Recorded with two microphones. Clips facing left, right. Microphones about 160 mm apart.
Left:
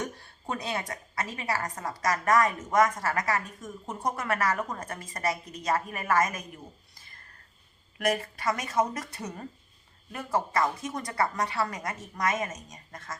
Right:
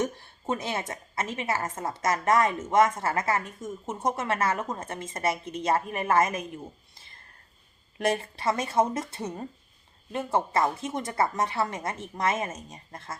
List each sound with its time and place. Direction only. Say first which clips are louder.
0.0 s a woman's voice: right 6 dB; 20° right (ahead or behind)
6.9 s a sound: right 1 dB; 25° right (ahead or behind)
7.9 s a woman's voice: right 1 dB; 30° right (ahead or behind)